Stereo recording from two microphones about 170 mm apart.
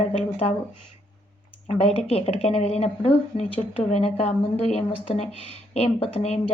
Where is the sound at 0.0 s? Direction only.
40° left (ahead or behind).